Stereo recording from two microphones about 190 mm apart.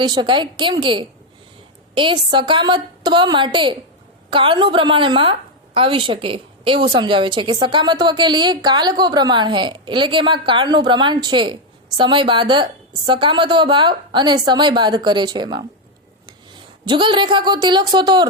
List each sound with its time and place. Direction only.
0.0 s a woman's voice: 25° right (ahead or behind)
16.8 s a woman's voice: 25° right (ahead or behind)